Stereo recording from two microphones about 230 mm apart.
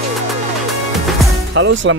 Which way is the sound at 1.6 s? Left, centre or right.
Right.